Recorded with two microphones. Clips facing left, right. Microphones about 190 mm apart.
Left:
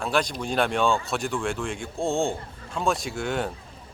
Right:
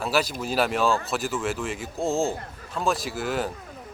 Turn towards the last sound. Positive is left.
turn(degrees=0)  # may be behind; listen again after turning